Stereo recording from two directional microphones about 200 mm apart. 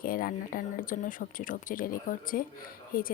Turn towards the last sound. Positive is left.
turn(degrees=45)  # may be behind; listen again after turning